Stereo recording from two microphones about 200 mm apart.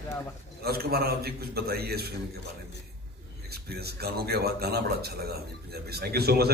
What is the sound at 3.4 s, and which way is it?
A man's voice, 50° right (ahead or behind).